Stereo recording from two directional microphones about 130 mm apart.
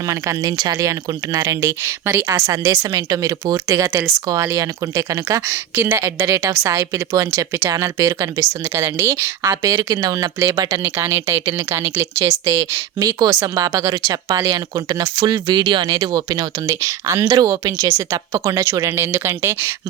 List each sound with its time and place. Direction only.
0.0 s speech: 25° right (ahead or behind)